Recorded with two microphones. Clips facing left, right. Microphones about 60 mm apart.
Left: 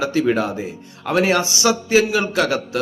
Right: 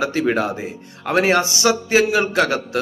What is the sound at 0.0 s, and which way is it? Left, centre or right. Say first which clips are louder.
A man's voice: left 1 dB; right.